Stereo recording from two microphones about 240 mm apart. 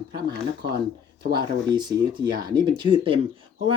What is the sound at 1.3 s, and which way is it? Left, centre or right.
Speech, centre.